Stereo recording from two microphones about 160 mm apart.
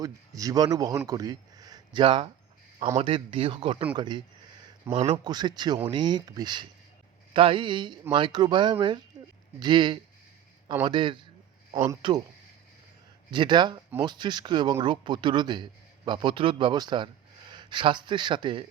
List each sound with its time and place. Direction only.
0.0 s speech: 20° right (ahead or behind)
13.3 s speech: 30° right (ahead or behind)